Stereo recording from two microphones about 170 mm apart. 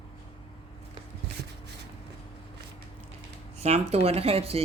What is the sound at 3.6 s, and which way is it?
Speech, 40° right (ahead or behind).